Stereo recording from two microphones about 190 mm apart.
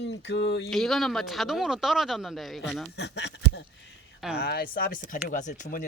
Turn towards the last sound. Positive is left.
turn(degrees=45)  # may be behind; listen again after turning